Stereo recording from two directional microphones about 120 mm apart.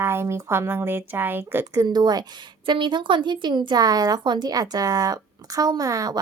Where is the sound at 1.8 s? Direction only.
35° right (ahead or behind).